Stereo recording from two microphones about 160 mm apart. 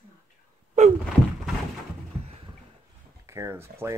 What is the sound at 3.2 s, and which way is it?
Speech, 15° right (ahead or behind).